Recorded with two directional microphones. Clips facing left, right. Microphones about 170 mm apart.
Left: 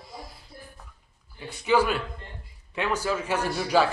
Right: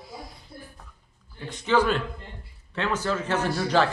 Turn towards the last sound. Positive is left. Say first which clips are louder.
# even
turn(degrees=10)  # may be behind; listen again after turning